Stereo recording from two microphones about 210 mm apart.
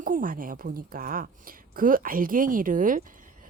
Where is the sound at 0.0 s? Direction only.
40° right (ahead or behind).